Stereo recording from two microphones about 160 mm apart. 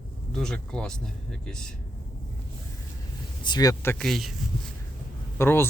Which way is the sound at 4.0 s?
Centre (ahead or behind).